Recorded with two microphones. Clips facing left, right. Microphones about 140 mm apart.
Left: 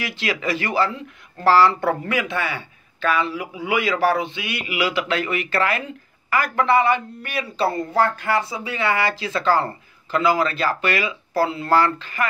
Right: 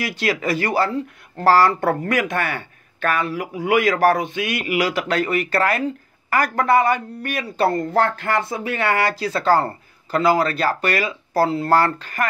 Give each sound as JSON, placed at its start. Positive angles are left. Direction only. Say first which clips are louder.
{"t": 0.0, "sound": "speech", "louder": "right 3 dB", "side_deg": -40}